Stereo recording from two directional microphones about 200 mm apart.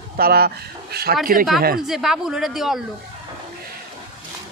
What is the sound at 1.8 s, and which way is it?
Speech, centre (ahead or behind).